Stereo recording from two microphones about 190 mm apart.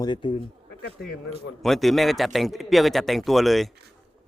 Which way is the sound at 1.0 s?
55° left (ahead or behind).